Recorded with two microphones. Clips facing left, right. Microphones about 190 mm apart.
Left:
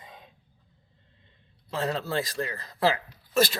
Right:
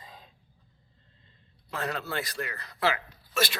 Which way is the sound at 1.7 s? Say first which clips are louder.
Left 4 dB; 30° left (ahead or behind).